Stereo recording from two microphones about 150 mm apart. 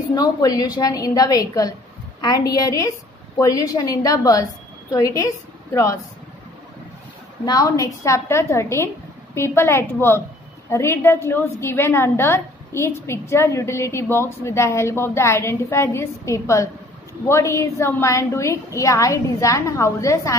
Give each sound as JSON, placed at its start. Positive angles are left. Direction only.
{"t": 0.1, "sound": "a woman's voice", "side_deg": 25}
{"t": 7.4, "sound": "a woman's voice", "side_deg": 25}